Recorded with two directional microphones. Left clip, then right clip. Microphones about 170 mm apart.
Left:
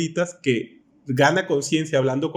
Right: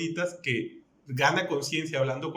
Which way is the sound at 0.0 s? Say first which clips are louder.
Left 6 dB; 40° left (ahead or behind).